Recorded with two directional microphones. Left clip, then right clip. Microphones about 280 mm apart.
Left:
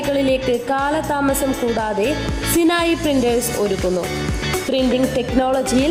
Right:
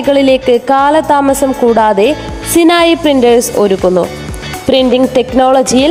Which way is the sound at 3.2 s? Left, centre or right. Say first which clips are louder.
Right 10 dB; centre.